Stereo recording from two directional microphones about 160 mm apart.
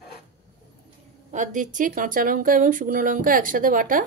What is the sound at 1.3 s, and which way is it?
Speech, 50° right (ahead or behind).